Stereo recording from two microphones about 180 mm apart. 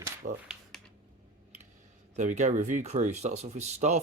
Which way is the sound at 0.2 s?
45° right (ahead or behind).